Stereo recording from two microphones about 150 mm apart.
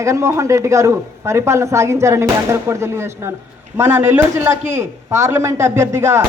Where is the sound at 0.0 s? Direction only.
20° right (ahead or behind).